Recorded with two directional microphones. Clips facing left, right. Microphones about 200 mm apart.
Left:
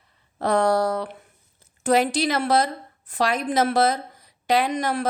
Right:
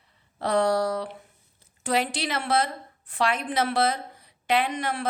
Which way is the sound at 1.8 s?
45° left (ahead or behind).